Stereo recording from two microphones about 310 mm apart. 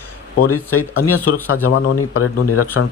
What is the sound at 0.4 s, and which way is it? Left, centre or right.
Speech, left.